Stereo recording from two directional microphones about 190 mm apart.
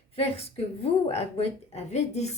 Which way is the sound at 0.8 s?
30° left (ahead or behind).